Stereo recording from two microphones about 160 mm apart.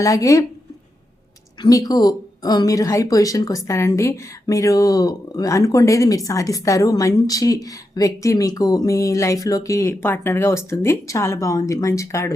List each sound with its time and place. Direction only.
0.0 s a woman's voice: 20° left (ahead or behind)
1.6 s a woman's voice: 25° left (ahead or behind)